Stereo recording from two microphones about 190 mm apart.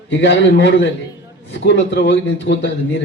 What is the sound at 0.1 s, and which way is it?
A man's voice, 65° left (ahead or behind).